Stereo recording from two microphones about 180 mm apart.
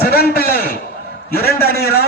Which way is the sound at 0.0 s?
60° left (ahead or behind).